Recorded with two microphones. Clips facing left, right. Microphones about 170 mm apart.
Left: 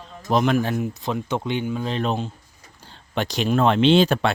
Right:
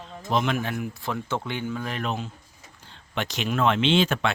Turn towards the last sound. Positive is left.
turn(degrees=35)  # may be behind; listen again after turning